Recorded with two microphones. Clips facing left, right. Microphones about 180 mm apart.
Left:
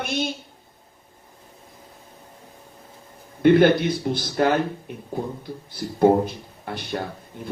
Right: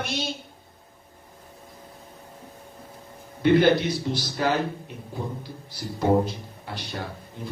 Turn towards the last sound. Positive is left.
turn(degrees=55)  # may be behind; listen again after turning